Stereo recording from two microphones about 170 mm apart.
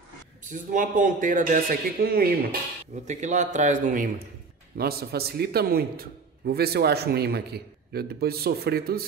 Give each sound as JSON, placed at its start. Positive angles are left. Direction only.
{"t": 0.5, "sound": "speech", "side_deg": -50}
{"t": 3.1, "sound": "speech", "side_deg": -45}
{"t": 4.7, "sound": "a man's voice", "side_deg": -65}